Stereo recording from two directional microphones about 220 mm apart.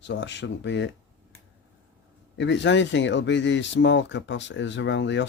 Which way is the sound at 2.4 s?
55° left (ahead or behind).